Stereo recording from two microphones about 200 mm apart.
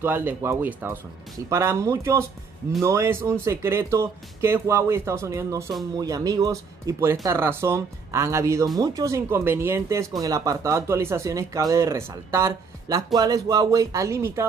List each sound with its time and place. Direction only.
0.0 s speech: 10° right (ahead or behind)